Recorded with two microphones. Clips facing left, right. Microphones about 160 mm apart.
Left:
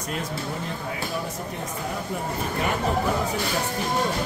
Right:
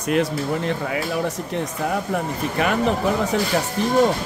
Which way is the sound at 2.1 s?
75° right (ahead or behind).